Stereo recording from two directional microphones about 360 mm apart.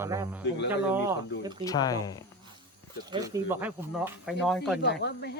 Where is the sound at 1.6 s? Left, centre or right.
Centre.